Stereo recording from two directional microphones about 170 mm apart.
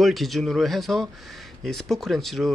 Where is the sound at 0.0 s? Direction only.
Centre (ahead or behind).